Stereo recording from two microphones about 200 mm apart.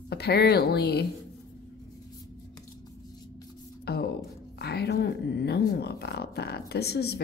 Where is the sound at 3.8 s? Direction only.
50° left (ahead or behind).